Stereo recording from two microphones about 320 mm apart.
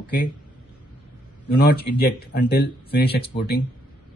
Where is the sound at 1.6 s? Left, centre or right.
Left.